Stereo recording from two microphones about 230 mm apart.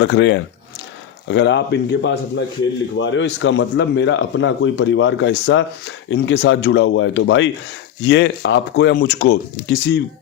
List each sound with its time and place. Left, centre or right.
0.0 s speech: left